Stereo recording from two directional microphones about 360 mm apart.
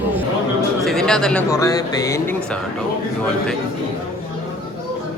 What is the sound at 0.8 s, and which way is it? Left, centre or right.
Speech, centre.